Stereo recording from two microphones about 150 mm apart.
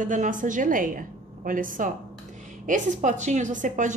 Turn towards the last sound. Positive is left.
turn(degrees=-55)  # may be behind; listen again after turning